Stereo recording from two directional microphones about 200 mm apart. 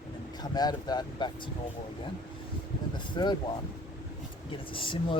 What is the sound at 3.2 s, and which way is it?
Speech, 20° left (ahead or behind).